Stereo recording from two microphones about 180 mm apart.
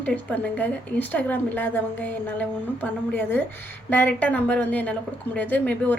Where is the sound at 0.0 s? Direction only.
10° left (ahead or behind).